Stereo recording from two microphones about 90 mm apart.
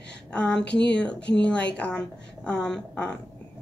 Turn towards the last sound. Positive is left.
turn(degrees=10)  # may be behind; listen again after turning